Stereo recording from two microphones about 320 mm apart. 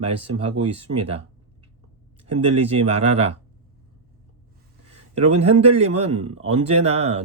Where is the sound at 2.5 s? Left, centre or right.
Centre.